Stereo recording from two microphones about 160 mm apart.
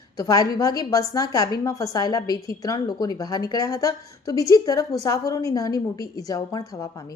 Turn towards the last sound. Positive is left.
turn(degrees=20)  # may be behind; listen again after turning